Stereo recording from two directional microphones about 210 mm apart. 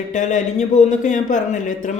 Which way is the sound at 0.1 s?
35° left (ahead or behind).